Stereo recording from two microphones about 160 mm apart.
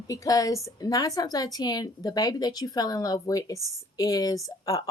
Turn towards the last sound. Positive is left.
turn(degrees=20)  # may be behind; listen again after turning